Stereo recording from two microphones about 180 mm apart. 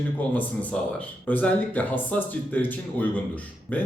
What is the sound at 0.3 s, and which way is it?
Speech, 10° left (ahead or behind).